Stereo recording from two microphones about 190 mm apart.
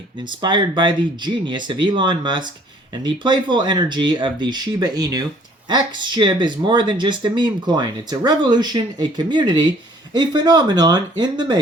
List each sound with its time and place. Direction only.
0.3 s speech: 25° right (ahead or behind)